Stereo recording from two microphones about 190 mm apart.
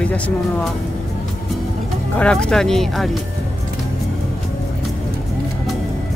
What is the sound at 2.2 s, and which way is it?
Speech, 5° left (ahead or behind).